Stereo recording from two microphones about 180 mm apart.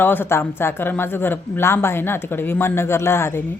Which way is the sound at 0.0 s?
10° left (ahead or behind).